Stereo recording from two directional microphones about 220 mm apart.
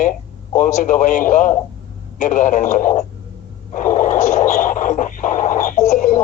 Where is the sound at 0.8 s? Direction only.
35° left (ahead or behind).